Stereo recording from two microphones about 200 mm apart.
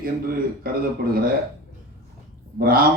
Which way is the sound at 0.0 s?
45° right (ahead or behind).